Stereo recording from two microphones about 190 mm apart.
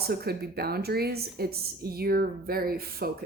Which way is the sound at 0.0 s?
55° right (ahead or behind).